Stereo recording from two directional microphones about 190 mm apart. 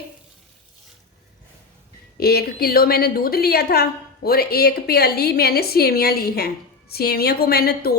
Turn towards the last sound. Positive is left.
turn(degrees=55)  # may be behind; listen again after turning